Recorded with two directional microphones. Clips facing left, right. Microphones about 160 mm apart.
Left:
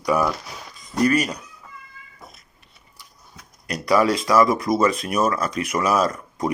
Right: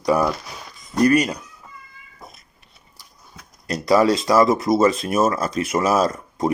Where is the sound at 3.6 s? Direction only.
30° right (ahead or behind).